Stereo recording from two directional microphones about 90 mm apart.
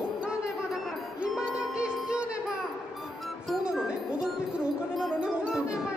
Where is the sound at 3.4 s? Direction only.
Centre (ahead or behind).